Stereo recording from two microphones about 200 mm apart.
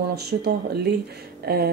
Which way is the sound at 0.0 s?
55° right (ahead or behind).